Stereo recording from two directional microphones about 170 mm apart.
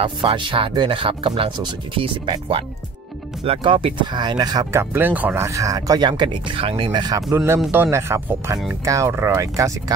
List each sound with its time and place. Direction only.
0.0 s speech: 30° right (ahead or behind)